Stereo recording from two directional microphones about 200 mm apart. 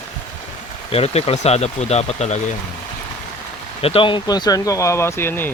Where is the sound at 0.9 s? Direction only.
30° left (ahead or behind).